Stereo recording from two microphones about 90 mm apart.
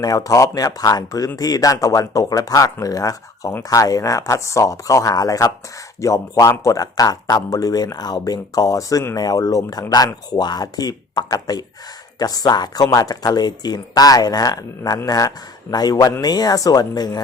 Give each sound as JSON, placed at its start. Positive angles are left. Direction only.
{"t": 0.0, "sound": "speech", "side_deg": 40}